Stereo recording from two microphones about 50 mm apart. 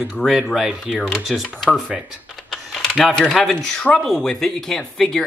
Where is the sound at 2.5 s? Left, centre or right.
Centre.